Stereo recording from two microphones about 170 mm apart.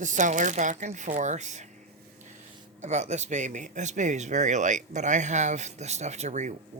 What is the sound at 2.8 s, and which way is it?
Speech, 45° right (ahead or behind).